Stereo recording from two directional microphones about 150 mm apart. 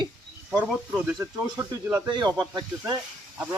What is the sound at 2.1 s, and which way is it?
Speech, 30° right (ahead or behind).